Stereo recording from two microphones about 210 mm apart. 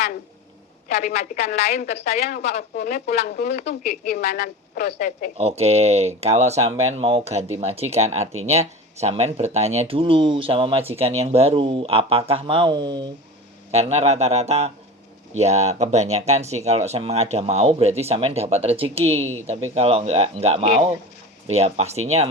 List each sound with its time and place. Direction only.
0.9 s speech: 35° left (ahead or behind)
1.6 s speech: 50° left (ahead or behind)
2.5 s speech: 35° left (ahead or behind)
2.8 s speech: 45° left (ahead or behind)
3.7 s speech: 35° left (ahead or behind)
4.4 s speech: 45° left (ahead or behind)
5.4 s speech: 30° right (ahead or behind)